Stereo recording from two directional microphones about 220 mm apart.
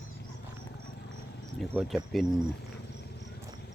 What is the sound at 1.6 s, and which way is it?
Speech, centre (ahead or behind).